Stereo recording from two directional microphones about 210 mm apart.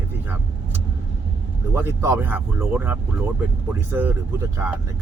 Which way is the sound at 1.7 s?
10° right (ahead or behind).